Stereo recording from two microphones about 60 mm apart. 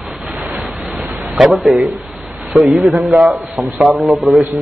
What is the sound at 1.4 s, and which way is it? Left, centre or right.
A man's voice, centre.